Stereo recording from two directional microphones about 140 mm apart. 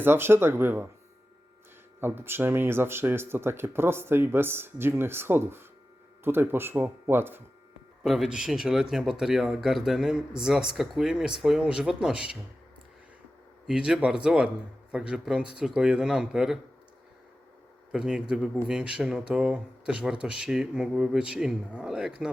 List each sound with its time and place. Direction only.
0.0 s speech: 15° right (ahead or behind)
2.0 s speech: 15° right (ahead or behind)
8.0 s speech: 5° right (ahead or behind)
13.7 s speech: 5° right (ahead or behind)
17.9 s speech: 5° right (ahead or behind)